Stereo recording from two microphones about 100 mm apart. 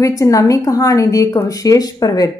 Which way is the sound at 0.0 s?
35° left (ahead or behind).